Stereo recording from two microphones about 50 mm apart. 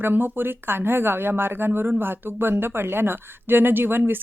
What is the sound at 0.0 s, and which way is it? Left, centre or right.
Speech, right.